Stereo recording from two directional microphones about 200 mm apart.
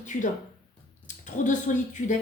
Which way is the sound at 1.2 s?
40° left (ahead or behind).